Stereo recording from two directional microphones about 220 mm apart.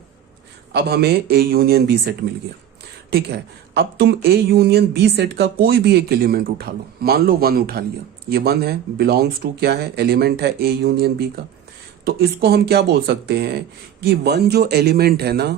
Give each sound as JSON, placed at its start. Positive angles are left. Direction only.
{"t": 0.7, "sound": "speech", "side_deg": -45}